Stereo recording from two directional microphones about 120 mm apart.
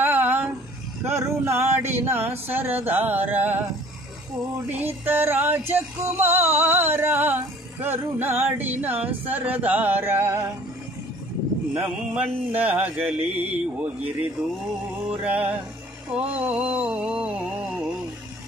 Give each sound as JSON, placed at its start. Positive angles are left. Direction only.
{"t": 0.0, "sound": "music", "side_deg": -15}
{"t": 1.0, "sound": "a sound", "side_deg": -20}
{"t": 4.6, "sound": "music", "side_deg": -15}
{"t": 11.7, "sound": "music", "side_deg": -15}
{"t": 15.2, "sound": "music", "side_deg": -15}
{"t": 17.2, "sound": "a sound", "side_deg": -10}